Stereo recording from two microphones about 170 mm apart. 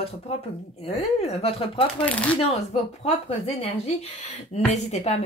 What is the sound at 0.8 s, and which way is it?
A woman's voice, 35° left (ahead or behind).